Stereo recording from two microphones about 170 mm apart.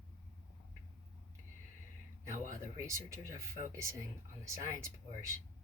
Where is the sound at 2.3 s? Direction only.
15° right (ahead or behind).